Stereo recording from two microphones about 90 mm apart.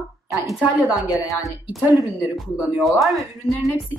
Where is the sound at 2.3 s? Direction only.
Centre (ahead or behind).